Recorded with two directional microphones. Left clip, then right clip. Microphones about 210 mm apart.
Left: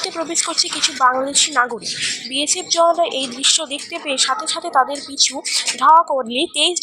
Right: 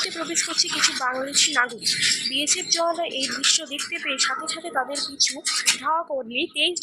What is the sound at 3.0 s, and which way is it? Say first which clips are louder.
A woman's voice: left 6 dB; 20° left (ahead or behind).